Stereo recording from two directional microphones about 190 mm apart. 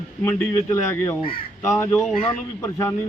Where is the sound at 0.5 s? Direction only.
15° left (ahead or behind).